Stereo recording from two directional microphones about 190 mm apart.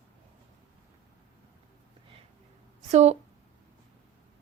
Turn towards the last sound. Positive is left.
turn(degrees=-35)  # may be behind; listen again after turning